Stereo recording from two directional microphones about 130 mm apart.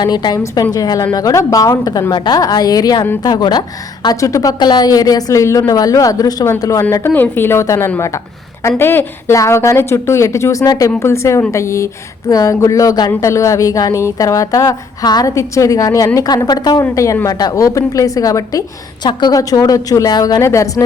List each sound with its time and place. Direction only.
0.0 s a woman's voice: 35° left (ahead or behind)